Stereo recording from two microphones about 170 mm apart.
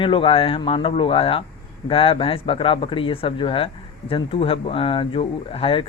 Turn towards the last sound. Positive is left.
turn(degrees=30)  # may be behind; listen again after turning